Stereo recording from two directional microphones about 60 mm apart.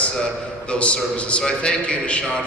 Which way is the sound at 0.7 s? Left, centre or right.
Left.